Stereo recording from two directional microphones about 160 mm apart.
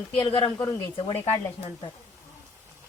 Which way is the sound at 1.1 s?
15° left (ahead or behind).